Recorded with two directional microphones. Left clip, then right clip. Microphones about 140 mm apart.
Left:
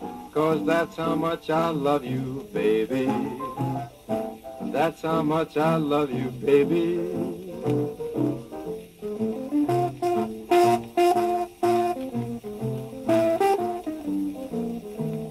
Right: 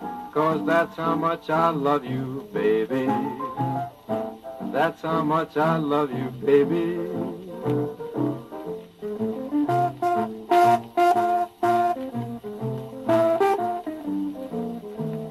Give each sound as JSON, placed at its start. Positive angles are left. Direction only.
{"t": 0.3, "sound": "music", "side_deg": -40}
{"t": 9.7, "sound": "music", "side_deg": -35}
{"t": 13.0, "sound": "music", "side_deg": -35}